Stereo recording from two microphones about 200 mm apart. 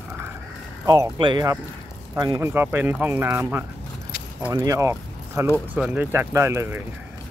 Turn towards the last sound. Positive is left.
turn(degrees=-15)  # may be behind; listen again after turning